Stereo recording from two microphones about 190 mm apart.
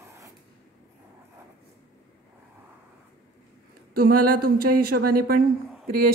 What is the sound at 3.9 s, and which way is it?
A woman's voice, 50° right (ahead or behind).